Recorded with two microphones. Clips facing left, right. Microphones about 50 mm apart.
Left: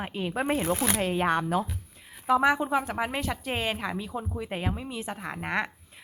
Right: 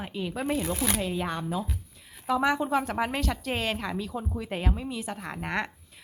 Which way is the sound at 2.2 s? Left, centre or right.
Centre.